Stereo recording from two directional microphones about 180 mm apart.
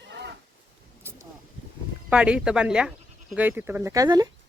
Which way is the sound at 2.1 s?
5° right (ahead or behind).